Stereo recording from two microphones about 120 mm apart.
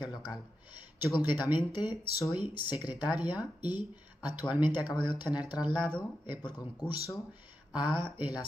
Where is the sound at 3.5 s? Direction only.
40° left (ahead or behind).